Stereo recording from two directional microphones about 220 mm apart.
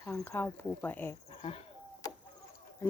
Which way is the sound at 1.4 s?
25° left (ahead or behind).